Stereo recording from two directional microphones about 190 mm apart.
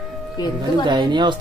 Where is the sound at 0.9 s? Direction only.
25° right (ahead or behind).